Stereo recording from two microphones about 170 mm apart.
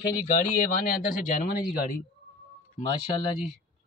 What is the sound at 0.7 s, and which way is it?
Speech, 55° left (ahead or behind).